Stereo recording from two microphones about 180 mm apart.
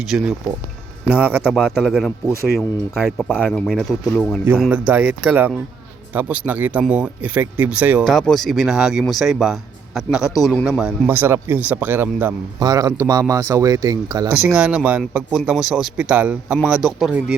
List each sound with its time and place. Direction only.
0.1 s speech: centre (ahead or behind)
4.9 s speech: 10° right (ahead or behind)
14.3 s speech: 5° right (ahead or behind)